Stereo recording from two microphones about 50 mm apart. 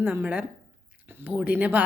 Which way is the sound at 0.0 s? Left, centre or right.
Right.